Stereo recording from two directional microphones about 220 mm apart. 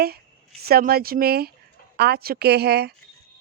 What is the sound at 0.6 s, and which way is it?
A woman's voice, 45° right (ahead or behind).